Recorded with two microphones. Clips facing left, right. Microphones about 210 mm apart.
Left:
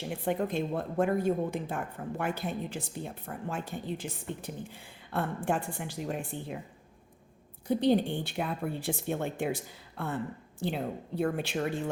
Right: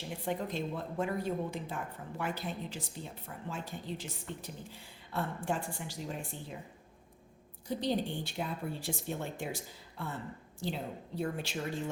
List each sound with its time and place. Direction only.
0.3 s speech: 55° left (ahead or behind)
7.7 s speech: 60° left (ahead or behind)